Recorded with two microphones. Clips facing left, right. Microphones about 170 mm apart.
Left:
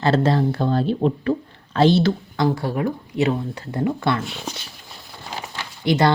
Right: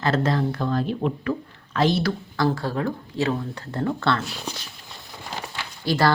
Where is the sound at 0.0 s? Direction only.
30° left (ahead or behind).